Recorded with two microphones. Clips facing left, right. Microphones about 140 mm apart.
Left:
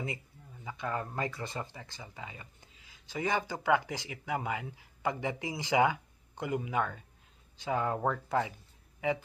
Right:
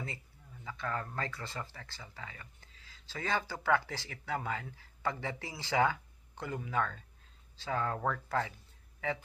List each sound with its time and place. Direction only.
0.7 s speech: 15° left (ahead or behind)